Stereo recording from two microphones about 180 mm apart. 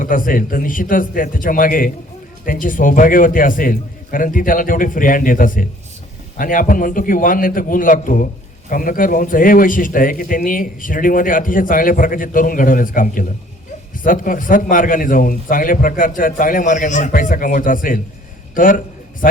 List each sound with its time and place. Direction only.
0.0 s a man's voice: 50° left (ahead or behind)